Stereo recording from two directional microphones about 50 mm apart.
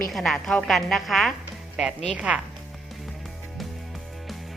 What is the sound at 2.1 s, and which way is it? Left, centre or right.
Speech, right.